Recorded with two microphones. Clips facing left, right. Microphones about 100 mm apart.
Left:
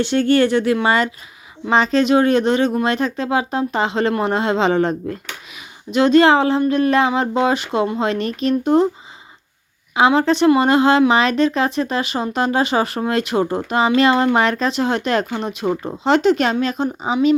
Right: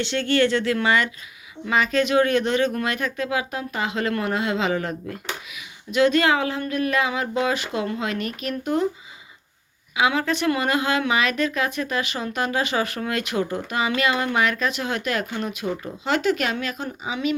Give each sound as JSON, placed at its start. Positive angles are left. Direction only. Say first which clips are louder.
{"t": 0.1, "sound": "speech", "louder": "left 5 dB", "side_deg": 30}
{"t": 9.9, "sound": "speech", "louder": "left 7 dB", "side_deg": 30}